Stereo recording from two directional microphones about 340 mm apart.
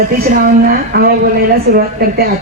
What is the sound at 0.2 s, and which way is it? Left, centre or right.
A woman's voice, right.